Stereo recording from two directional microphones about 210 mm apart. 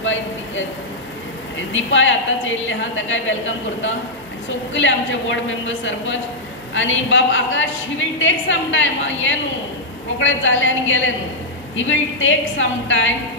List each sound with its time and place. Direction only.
0.0 s vehicle: 65° left (ahead or behind)
1.7 s a woman's voice: 65° left (ahead or behind)
4.7 s a woman's voice: 65° left (ahead or behind)